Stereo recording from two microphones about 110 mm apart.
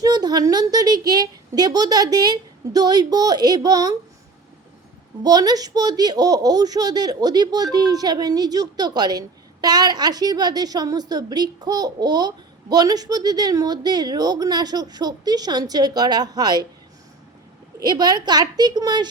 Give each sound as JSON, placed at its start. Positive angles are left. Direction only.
{"t": 0.0, "sound": "speech", "side_deg": -40}
{"t": 5.2, "sound": "speech", "side_deg": -35}
{"t": 17.7, "sound": "speech", "side_deg": -40}